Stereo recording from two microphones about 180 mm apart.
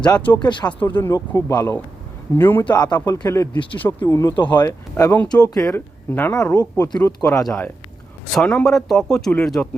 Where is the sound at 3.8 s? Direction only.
10° left (ahead or behind).